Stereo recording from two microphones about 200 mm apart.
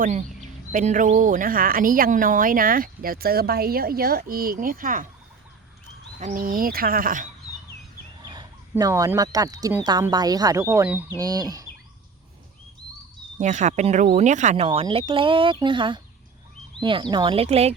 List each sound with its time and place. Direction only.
0.0 s speech: 35° right (ahead or behind)
6.1 s speech: 40° right (ahead or behind)
8.2 s a sound: 20° right (ahead or behind)
8.7 s speech: 15° right (ahead or behind)
13.4 s speech: 35° right (ahead or behind)